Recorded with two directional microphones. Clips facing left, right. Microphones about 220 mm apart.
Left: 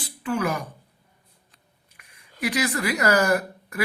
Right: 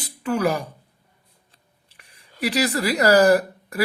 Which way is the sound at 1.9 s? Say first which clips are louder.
Right 2 dB; 35° right (ahead or behind).